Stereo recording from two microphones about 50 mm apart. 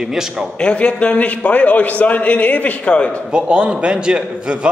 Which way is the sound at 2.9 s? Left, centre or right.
Left.